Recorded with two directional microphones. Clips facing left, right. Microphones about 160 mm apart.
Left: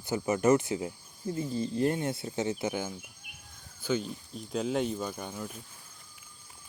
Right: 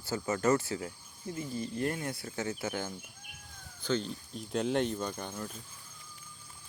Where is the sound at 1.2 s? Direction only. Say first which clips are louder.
Left 5 dB; 30° left (ahead or behind); by 5.6 s 10° left (ahead or behind).